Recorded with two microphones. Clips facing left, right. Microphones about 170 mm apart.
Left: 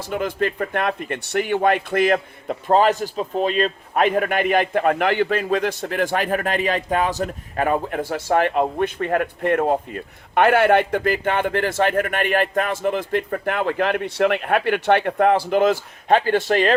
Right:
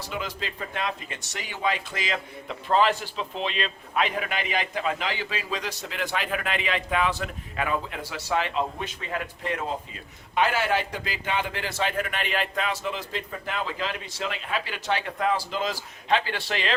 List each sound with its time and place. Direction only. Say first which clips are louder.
0.0 s speech: left 10 dB; 55° left (ahead or behind)